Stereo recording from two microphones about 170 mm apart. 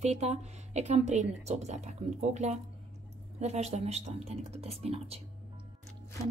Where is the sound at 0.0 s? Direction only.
40° right (ahead or behind).